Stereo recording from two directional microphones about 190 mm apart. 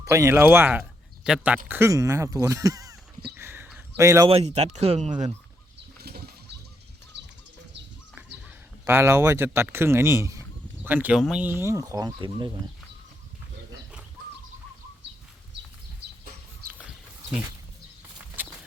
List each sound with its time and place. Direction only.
0.0 s speech: 15° right (ahead or behind)
3.3 s a sound: 10° right (ahead or behind)
4.3 s speech: 35° right (ahead or behind)
6.0 s pigeon: 55° right (ahead or behind)
7.1 s bird: 70° right (ahead or behind)
8.8 s speech: 15° right (ahead or behind)
16.6 s a sound: 10° right (ahead or behind)
18.4 s horse: 10° right (ahead or behind)